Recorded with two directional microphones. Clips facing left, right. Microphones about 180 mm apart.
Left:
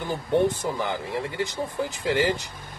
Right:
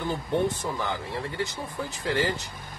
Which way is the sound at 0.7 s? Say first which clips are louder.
Left 3 dB; 15° left (ahead or behind).